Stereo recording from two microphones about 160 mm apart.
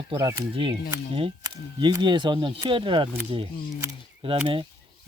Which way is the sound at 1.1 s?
30° right (ahead or behind).